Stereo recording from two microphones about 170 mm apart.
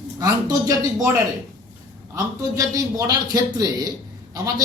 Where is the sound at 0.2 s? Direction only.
20° right (ahead or behind).